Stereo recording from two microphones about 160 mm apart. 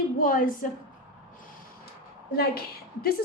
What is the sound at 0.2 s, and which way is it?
Speech, 60° left (ahead or behind).